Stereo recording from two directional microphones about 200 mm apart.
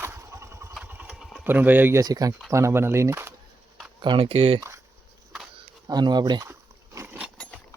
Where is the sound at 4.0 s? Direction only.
25° right (ahead or behind).